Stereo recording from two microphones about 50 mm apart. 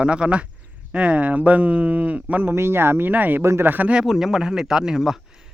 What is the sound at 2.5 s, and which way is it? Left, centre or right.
Speech, right.